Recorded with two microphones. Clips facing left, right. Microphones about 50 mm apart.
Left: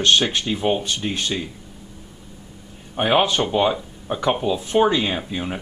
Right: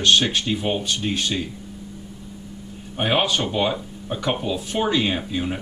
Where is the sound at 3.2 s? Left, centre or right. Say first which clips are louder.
Left 2 dB; centre.